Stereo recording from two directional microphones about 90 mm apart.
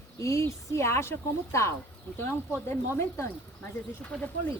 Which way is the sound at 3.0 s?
30° left (ahead or behind).